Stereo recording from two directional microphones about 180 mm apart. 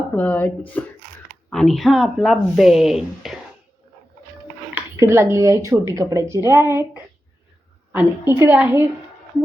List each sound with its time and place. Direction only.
0.2 s speech: 10° left (ahead or behind)
4.7 s speech: 15° right (ahead or behind)